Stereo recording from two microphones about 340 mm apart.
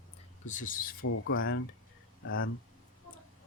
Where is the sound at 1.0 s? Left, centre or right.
Left.